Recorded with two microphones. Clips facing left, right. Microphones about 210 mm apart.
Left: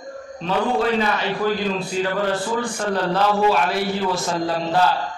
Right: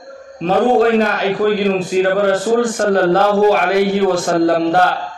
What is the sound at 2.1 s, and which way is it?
Speech, 80° right.